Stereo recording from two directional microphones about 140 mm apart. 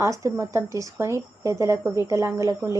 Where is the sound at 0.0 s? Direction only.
20° right (ahead or behind).